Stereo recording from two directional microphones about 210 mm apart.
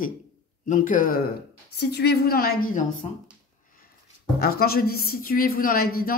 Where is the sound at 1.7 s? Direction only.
50° left (ahead or behind).